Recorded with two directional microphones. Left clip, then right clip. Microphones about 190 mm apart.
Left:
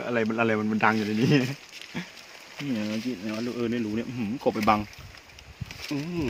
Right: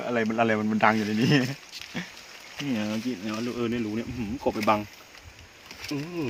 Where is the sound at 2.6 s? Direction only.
10° right (ahead or behind).